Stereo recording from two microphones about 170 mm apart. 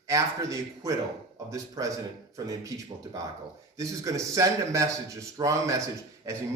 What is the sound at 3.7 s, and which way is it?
A man's voice, 20° right (ahead or behind).